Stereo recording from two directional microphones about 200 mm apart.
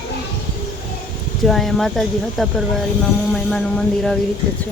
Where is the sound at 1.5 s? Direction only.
Centre (ahead or behind).